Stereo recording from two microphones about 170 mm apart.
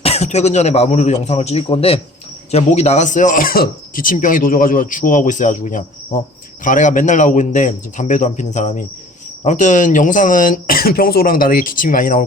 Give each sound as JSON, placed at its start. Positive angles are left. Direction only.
{"t": 0.0, "sound": "speech", "side_deg": 40}